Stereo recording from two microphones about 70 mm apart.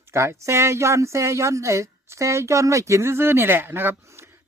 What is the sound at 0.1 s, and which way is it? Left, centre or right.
Speech, right.